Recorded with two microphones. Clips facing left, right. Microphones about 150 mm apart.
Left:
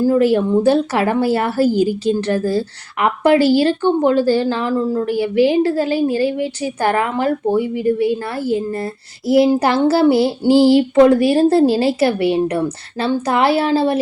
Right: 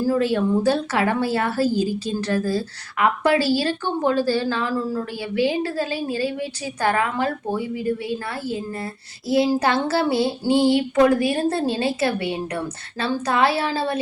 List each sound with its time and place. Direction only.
0.3 s a woman's voice: 25° left (ahead or behind)